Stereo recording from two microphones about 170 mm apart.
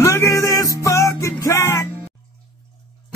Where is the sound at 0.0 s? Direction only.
15° left (ahead or behind).